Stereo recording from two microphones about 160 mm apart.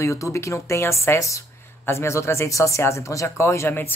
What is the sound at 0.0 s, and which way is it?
Speech, 20° left (ahead or behind).